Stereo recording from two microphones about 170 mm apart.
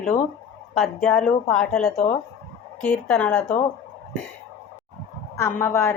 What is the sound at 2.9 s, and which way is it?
Speech, 10° left (ahead or behind).